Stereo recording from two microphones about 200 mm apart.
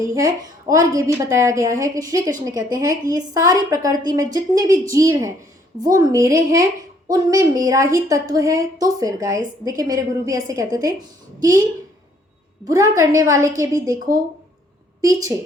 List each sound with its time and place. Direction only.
0.1 s a woman's voice: 15° right (ahead or behind)
12.6 s a woman's voice: 15° right (ahead or behind)